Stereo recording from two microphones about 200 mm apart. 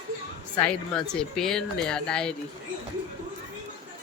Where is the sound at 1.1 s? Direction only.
Centre (ahead or behind).